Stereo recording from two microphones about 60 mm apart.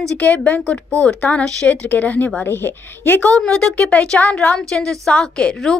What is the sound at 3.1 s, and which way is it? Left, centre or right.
Speech, left.